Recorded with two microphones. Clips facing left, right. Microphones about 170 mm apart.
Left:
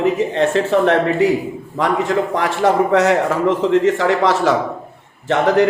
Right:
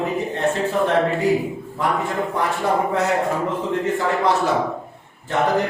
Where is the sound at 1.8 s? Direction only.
90° left.